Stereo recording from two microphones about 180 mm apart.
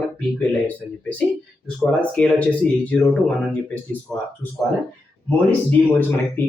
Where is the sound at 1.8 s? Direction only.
5° left (ahead or behind).